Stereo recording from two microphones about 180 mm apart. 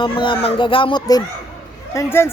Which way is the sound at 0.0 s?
30° left (ahead or behind).